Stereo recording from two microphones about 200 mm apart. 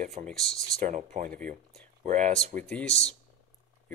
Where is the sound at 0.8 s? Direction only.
40° right (ahead or behind).